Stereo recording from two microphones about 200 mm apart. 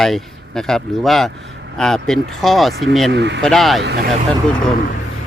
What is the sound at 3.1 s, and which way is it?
Speech, 60° right (ahead or behind).